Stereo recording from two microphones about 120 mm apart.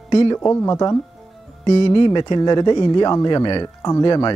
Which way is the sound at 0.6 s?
30° left (ahead or behind).